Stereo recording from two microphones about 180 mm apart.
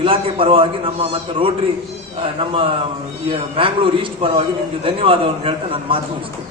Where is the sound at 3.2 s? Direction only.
30° right (ahead or behind).